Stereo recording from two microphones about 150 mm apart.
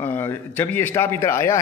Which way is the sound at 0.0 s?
15° left (ahead or behind).